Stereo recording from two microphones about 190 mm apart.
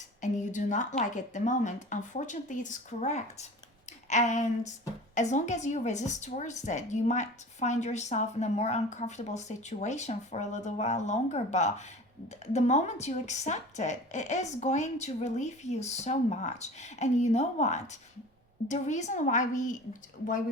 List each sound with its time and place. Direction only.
0.2 s a woman's voice: 40° left (ahead or behind)